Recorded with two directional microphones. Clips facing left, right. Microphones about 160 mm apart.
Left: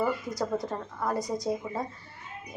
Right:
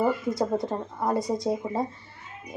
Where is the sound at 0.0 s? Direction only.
25° right (ahead or behind).